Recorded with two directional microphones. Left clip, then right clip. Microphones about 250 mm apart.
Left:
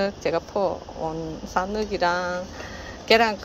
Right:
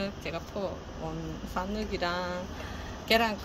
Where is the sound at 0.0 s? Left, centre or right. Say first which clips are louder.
Left 11 dB; centre.